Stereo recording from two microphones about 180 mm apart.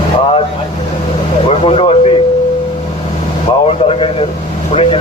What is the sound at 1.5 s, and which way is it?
Speech, 30° left (ahead or behind).